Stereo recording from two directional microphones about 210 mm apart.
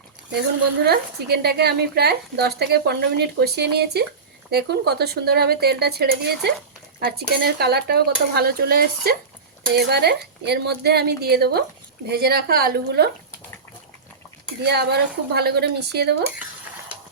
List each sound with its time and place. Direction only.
0.9 s a woman's voice: 50° right (ahead or behind)
14.6 s a woman's voice: 50° right (ahead or behind)